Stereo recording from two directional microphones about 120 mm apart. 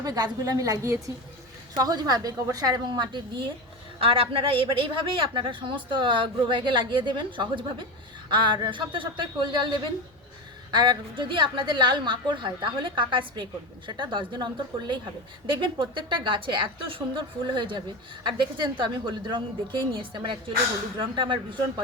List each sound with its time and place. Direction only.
0.0 s a woman's voice: 30° right (ahead or behind)
4.0 s a woman's voice: 50° right (ahead or behind)